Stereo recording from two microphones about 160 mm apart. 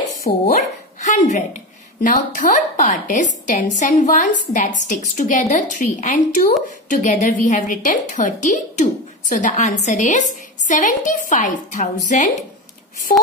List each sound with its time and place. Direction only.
0.3 s speech: 60° left (ahead or behind)
1.0 s a woman's voice: 45° left (ahead or behind)